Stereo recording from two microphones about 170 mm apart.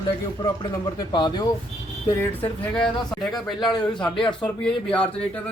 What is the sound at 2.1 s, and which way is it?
A man's voice, 10° left (ahead or behind).